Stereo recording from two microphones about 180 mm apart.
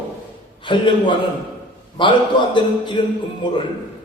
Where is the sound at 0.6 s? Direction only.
25° left (ahead or behind).